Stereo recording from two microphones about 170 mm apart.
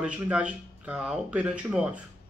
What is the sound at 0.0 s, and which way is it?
Speech, 5° right (ahead or behind).